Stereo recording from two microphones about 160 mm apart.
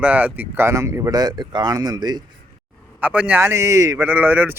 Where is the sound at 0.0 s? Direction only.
10° right (ahead or behind); by 2.2 s 25° right (ahead or behind).